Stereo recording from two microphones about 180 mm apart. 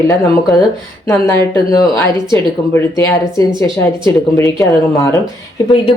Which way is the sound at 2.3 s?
15° left (ahead or behind).